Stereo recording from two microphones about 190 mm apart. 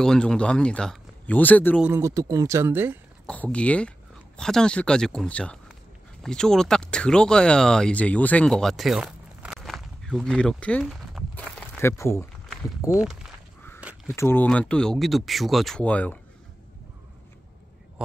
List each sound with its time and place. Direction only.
0.0 s speech: 5° left (ahead or behind)
1.8 s speech: 15° right (ahead or behind)
3.3 s speech: 5° left (ahead or behind)
10.9 s crumpling: centre (ahead or behind)
12.8 s speech: 15° left (ahead or behind)
14.0 s speech: 10° left (ahead or behind)